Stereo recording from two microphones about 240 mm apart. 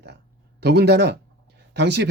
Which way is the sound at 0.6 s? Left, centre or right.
Right.